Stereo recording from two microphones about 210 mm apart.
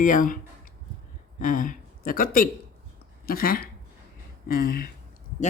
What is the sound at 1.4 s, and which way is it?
Speech, 40° left (ahead or behind).